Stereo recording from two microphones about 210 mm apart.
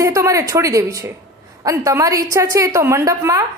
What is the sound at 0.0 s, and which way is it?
A woman's voice, 15° right (ahead or behind).